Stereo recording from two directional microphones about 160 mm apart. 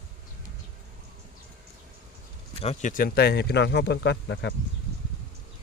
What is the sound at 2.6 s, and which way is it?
Speech, 45° left (ahead or behind).